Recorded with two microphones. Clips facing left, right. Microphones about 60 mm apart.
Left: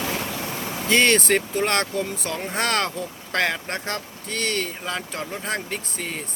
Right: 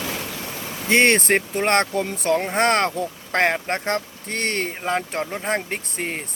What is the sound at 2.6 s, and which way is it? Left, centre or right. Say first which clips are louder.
Speech: right 5 dB; right.